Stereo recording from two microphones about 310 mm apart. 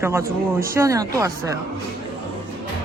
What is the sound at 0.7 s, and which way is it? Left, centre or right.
Speech, centre.